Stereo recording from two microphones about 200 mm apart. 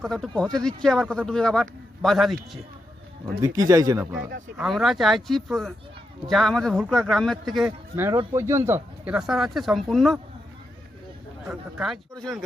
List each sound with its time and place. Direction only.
0.0 s speech: centre (ahead or behind)
3.4 s speech: 15° right (ahead or behind)
4.5 s speech: centre (ahead or behind)
7.9 s speech: 10° right (ahead or behind)
11.4 s speech: centre (ahead or behind)